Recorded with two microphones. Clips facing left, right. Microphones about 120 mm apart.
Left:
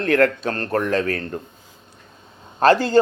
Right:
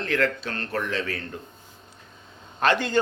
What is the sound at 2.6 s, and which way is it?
Speech, 35° left (ahead or behind).